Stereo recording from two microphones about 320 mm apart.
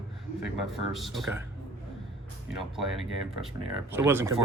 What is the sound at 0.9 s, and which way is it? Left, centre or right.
Speech, centre.